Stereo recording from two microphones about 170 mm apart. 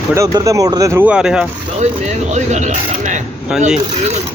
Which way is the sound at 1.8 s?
45° right (ahead or behind).